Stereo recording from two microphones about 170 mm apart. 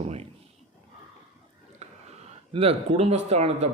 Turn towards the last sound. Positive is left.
turn(degrees=-40)  # may be behind; listen again after turning